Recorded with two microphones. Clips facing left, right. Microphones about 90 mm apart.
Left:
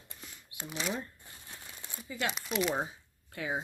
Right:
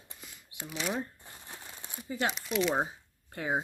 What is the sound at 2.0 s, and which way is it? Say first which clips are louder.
Speech: right 3 dB; 35° right (ahead or behind).